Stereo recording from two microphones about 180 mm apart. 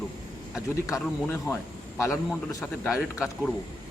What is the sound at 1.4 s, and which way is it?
Speech, 15° left (ahead or behind).